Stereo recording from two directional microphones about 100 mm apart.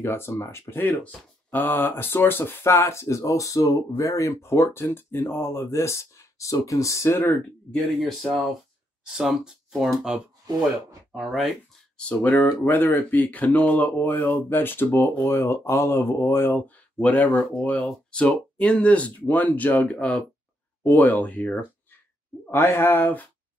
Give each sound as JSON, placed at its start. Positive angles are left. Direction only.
{"t": 0.0, "sound": "speech", "side_deg": 25}
{"t": 7.7, "sound": "speech", "side_deg": 5}
{"t": 9.0, "sound": "speech", "side_deg": -5}
{"t": 12.0, "sound": "speech", "side_deg": 10}